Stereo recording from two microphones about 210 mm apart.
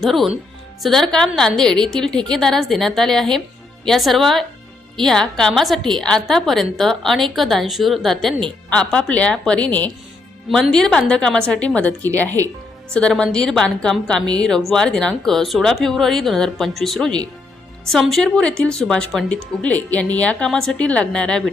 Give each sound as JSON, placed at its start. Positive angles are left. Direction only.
{"t": 0.0, "sound": "a woman's voice", "side_deg": 0}